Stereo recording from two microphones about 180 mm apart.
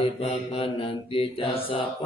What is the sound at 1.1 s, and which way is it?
Mantra, 30° left (ahead or behind).